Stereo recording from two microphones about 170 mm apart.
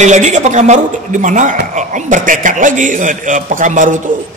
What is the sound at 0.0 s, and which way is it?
Speech, 45° right (ahead or behind).